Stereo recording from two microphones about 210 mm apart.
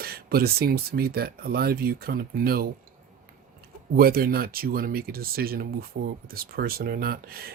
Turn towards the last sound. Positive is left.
turn(degrees=-45)  # may be behind; listen again after turning